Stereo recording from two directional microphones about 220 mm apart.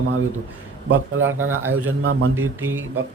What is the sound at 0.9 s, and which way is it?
Speech, 60° right (ahead or behind).